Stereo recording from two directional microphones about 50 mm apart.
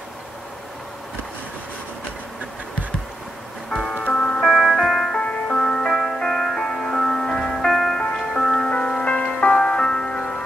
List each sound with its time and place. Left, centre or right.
3.7 s music: centre
4.0 s music: left
4.4 s music: centre
5.1 s music: centre
8.0 s music: centre
8.6 s music: left